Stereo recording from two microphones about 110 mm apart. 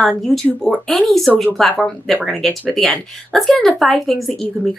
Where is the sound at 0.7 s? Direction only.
Centre (ahead or behind).